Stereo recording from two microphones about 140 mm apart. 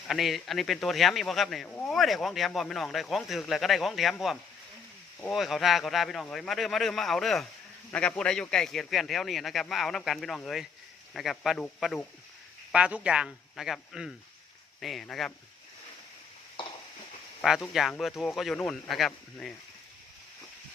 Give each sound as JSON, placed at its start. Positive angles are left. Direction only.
{"t": 0.1, "sound": "speech", "side_deg": 0}
{"t": 5.3, "sound": "speech", "side_deg": 0}
{"t": 12.7, "sound": "speech", "side_deg": -10}
{"t": 17.4, "sound": "speech", "side_deg": -5}